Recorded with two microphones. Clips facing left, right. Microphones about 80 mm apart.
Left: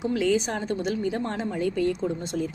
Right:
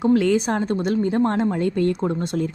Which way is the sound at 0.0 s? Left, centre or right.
Right.